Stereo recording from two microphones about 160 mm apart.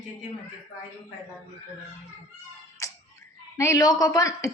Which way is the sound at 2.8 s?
20° left (ahead or behind).